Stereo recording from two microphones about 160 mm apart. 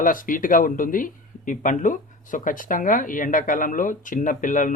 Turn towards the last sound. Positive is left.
turn(degrees=55)  # may be behind; listen again after turning